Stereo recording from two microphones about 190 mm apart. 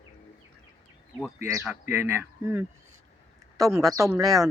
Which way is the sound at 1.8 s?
15° right (ahead or behind).